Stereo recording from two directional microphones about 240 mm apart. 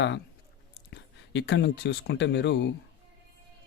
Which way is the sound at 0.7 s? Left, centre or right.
Left.